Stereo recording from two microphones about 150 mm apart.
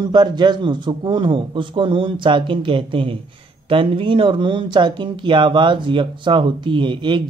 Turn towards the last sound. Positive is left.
turn(degrees=-30)  # may be behind; listen again after turning